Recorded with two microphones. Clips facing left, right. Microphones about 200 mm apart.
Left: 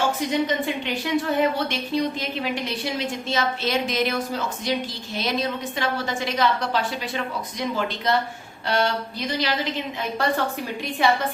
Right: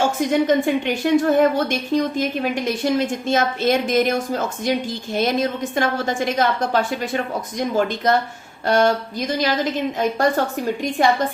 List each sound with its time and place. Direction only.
0.3 s a woman's voice: 50° right (ahead or behind)